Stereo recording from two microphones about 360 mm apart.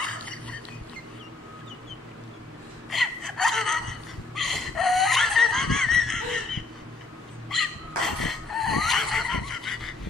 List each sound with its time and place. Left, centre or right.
0.0 s a sound: centre
2.9 s gasp: centre
4.4 s laughter: centre
7.4 s dog: centre